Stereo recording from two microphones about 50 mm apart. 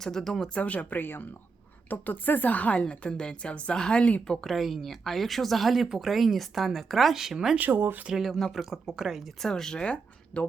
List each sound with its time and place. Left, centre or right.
0.0 s speech: centre
0.5 s a woman's voice: left
4.4 s speech: centre
7.7 s speech: right
8.2 s speech: centre
8.5 s speech: centre
9.4 s speech: centre
10.3 s speech: left